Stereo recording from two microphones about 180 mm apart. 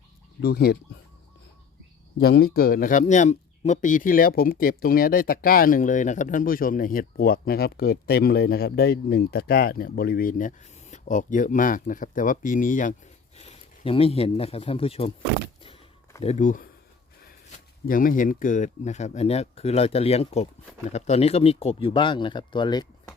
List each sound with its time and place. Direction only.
0.4 s speech: 60° left (ahead or behind)
2.1 s speech: 70° left (ahead or behind); by 12.9 s 45° left (ahead or behind)
13.3 s speech: 35° left (ahead or behind)
16.2 s speech: 45° left (ahead or behind)
17.8 s speech: 50° left (ahead or behind); by 23.1 s 25° left (ahead or behind)